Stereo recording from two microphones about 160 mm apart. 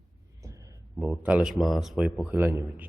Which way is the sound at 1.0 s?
10° right (ahead or behind).